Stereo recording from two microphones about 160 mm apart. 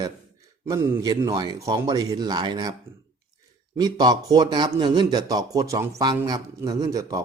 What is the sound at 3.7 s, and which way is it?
A man's voice, 25° right (ahead or behind).